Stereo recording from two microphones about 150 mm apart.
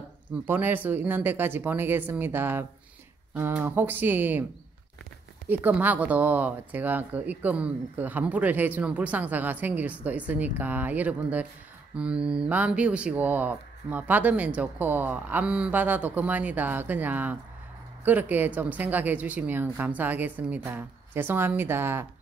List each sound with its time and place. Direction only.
0.5 s speech: 15° right (ahead or behind)
5.5 s speech: 10° right (ahead or behind)